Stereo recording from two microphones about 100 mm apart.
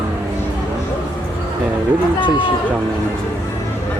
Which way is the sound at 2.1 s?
55° left (ahead or behind).